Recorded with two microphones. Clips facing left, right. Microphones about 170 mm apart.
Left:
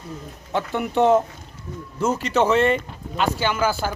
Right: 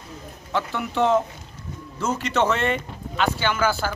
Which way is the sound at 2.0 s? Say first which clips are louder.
Left 3 dB; 15° left (ahead or behind).